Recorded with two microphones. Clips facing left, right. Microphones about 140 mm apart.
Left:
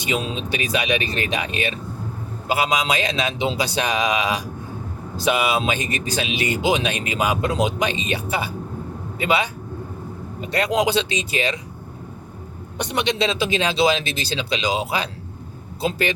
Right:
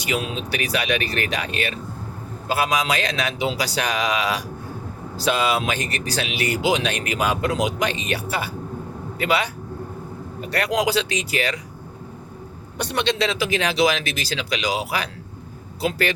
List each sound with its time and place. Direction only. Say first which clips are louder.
0.0 s speech: left 1 dB; 25° left (ahead or behind)
12.7 s speech: even; 20° left (ahead or behind)